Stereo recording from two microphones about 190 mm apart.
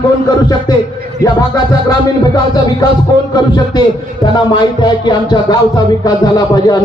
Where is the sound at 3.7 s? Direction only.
20° left (ahead or behind).